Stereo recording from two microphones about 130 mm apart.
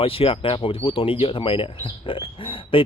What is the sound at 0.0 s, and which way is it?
Speech, 45° left (ahead or behind).